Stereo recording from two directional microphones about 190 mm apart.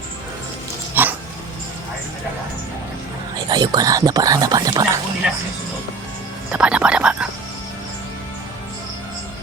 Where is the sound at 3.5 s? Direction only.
20° right (ahead or behind).